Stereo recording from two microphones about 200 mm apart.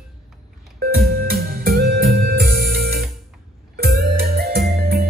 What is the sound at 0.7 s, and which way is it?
Music, 50° right (ahead or behind).